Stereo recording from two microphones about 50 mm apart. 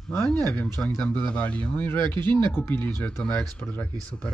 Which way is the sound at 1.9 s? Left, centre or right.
Left.